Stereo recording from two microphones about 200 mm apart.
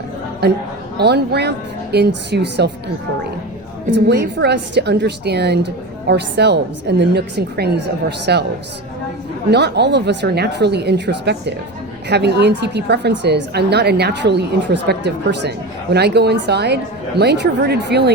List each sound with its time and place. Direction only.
0.4 s a woman's voice: 55° right (ahead or behind)
4.0 s a woman's voice: 55° right (ahead or behind)
9.5 s a woman's voice: 55° right (ahead or behind)